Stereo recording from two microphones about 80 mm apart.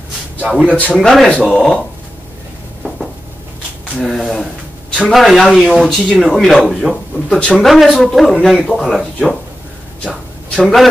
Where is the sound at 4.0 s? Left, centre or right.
Centre.